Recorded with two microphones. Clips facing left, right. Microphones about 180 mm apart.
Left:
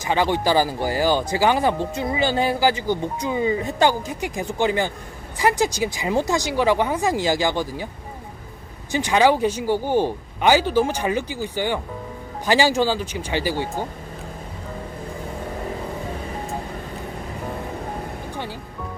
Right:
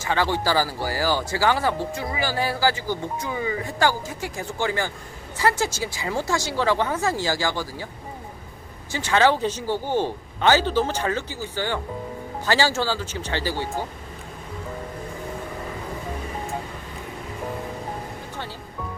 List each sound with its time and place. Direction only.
0.0 s speech: 15° left (ahead or behind)
8.9 s speech: 15° left (ahead or behind)